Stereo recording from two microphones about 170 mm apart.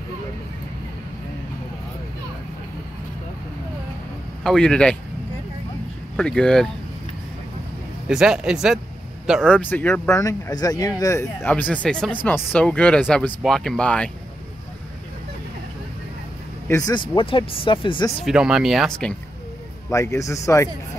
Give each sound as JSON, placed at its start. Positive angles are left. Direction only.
{"t": 4.4, "sound": "speech", "side_deg": 5}
{"t": 6.1, "sound": "speech", "side_deg": 5}
{"t": 8.1, "sound": "speech", "side_deg": -5}
{"t": 9.5, "sound": "speech", "side_deg": 10}
{"t": 16.6, "sound": "speech", "side_deg": 20}
{"t": 18.2, "sound": "speech", "side_deg": -5}
{"t": 19.9, "sound": "speech", "side_deg": 15}